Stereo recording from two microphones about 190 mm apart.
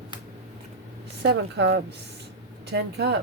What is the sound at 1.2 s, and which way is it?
Speech, 65° right (ahead or behind).